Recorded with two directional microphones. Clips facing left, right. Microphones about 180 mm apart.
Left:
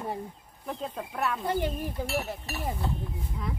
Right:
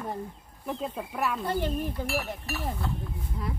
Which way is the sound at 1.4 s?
15° left (ahead or behind).